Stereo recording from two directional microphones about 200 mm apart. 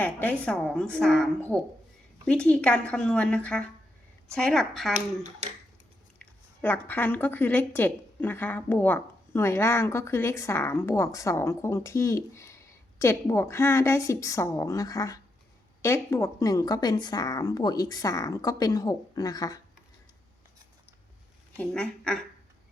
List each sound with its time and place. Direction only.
0.0 s a woman's voice: 10° left (ahead or behind)
6.1 s speech: 10° left (ahead or behind)
21.5 s a woman's voice: 5° left (ahead or behind)